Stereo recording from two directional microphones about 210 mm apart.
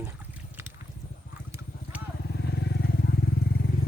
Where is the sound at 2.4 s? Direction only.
55° left (ahead or behind).